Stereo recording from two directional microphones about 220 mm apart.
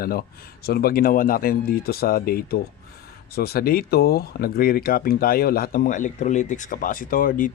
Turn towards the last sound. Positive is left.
turn(degrees=40)  # may be behind; listen again after turning